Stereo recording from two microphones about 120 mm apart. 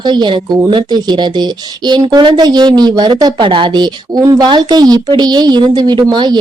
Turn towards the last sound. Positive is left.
turn(degrees=-40)  # may be behind; listen again after turning